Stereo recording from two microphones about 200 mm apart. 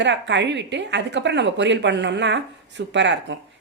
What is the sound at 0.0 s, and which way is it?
A woman's voice, 65° right (ahead or behind).